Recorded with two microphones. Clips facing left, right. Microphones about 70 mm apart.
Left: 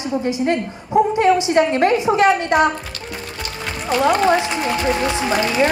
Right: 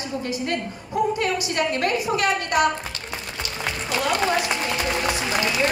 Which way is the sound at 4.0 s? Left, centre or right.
Left.